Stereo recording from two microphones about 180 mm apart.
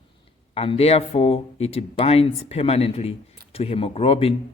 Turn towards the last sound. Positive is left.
turn(degrees=30)  # may be behind; listen again after turning